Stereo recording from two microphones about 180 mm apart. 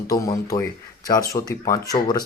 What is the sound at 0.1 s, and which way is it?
Speech, 20° left (ahead or behind).